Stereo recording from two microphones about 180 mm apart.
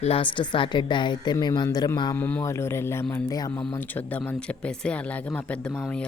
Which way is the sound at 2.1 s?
10° left (ahead or behind).